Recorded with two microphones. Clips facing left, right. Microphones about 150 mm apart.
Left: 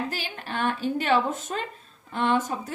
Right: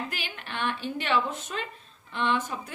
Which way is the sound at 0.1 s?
35° left (ahead or behind).